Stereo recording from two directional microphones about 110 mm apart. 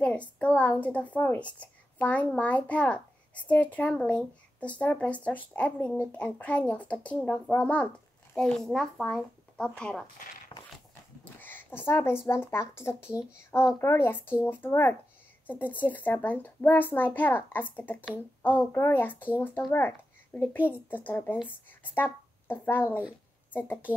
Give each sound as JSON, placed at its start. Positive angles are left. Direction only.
{"t": 0.0, "sound": "a woman's voice", "side_deg": 10}
{"t": 10.5, "sound": "a sound", "side_deg": 55}
{"t": 11.3, "sound": "a woman's voice", "side_deg": 15}